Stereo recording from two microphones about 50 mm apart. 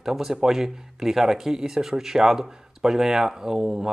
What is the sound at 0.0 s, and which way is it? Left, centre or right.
Speech, centre.